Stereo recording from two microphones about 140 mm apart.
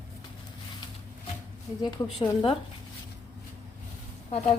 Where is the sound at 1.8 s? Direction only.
35° left (ahead or behind).